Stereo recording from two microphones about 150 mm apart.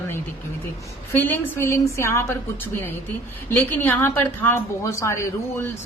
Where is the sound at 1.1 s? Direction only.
15° left (ahead or behind).